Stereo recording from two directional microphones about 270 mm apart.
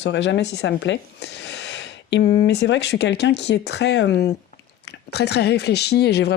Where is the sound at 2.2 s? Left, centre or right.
Left.